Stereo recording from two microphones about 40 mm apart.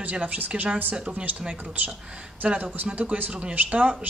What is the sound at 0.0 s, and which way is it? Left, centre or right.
A man's voice, right.